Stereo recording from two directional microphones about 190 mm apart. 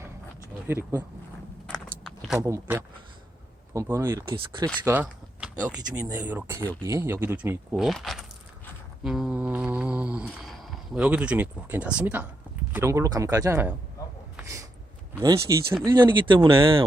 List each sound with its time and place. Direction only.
0.7 s speech: 10° right (ahead or behind)
1.6 s a sound: 5° left (ahead or behind)
2.4 s speech: 15° right (ahead or behind)
4.3 s speech: 25° right (ahead or behind)
4.9 s a sound: 10° right (ahead or behind)
6.1 s speech: 10° right (ahead or behind)
7.8 s speech: centre (ahead or behind)
9.0 s mantra: 5° right (ahead or behind)
12.7 s speech: 15° right (ahead or behind)
14.3 s a sound: 15° right (ahead or behind)
15.2 s speech: 15° right (ahead or behind)